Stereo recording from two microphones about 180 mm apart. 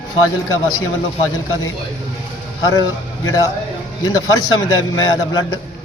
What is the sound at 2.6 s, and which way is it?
Speech, 20° left (ahead or behind).